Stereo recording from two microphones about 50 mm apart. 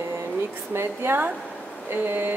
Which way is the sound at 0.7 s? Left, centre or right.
Right.